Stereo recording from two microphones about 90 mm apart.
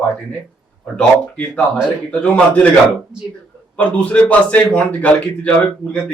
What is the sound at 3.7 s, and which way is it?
A man's voice, 15° left (ahead or behind).